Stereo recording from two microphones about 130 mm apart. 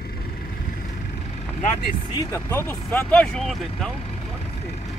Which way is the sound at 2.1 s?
25° left (ahead or behind).